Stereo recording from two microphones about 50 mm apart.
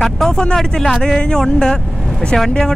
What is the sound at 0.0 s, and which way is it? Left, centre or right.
Speech, centre.